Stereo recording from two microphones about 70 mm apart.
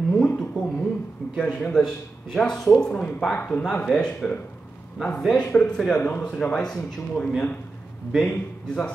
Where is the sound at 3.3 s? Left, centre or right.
Left.